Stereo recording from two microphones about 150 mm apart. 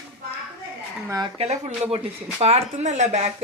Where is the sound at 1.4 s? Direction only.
45° right (ahead or behind).